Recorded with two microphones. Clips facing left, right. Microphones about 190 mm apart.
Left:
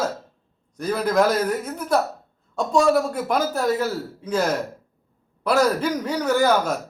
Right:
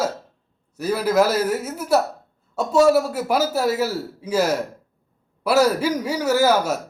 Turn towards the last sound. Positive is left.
turn(degrees=-5)  # may be behind; listen again after turning